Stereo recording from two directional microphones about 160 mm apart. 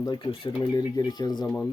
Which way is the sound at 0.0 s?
25° left (ahead or behind).